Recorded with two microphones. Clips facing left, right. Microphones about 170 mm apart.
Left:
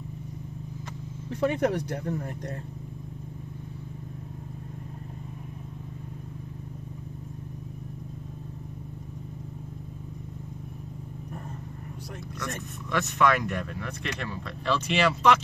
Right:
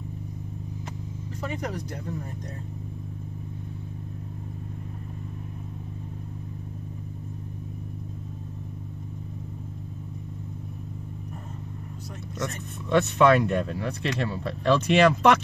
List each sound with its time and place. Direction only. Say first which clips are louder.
1.4 s speech: left 8 dB; 60° left (ahead or behind)
12.9 s speech: right 6 dB; 30° right (ahead or behind)
14.6 s speech: right 6 dB; 50° right (ahead or behind)